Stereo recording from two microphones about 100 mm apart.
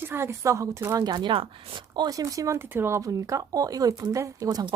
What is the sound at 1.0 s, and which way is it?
Speech, 50° right (ahead or behind).